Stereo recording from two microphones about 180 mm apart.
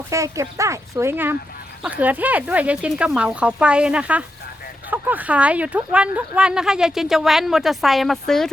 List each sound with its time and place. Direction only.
0.1 s speech: 15° right (ahead or behind); by 8.4 s centre (ahead or behind)